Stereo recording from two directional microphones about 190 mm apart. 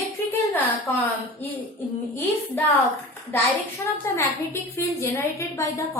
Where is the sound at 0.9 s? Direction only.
10° left (ahead or behind).